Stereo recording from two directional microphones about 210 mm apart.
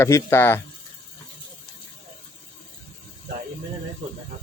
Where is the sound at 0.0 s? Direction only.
10° left (ahead or behind).